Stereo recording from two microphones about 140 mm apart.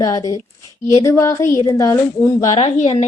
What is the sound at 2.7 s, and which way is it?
Speech, 50° left (ahead or behind).